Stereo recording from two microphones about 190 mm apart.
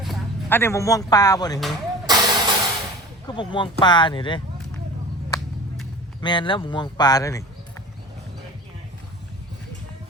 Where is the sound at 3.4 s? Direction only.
25° left (ahead or behind).